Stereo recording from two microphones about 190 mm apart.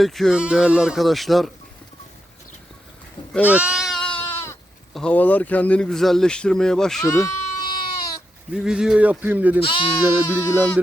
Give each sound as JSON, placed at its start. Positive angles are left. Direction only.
{"t": 0.0, "sound": "speech", "side_deg": 0}
{"t": 3.4, "sound": "goat", "side_deg": -5}
{"t": 4.9, "sound": "speech", "side_deg": 5}
{"t": 7.3, "sound": "goat", "side_deg": 20}
{"t": 8.5, "sound": "speech", "side_deg": -5}
{"t": 9.6, "sound": "speech", "side_deg": 25}
{"t": 10.1, "sound": "speech", "side_deg": -10}
{"t": 10.4, "sound": "a sound", "side_deg": 10}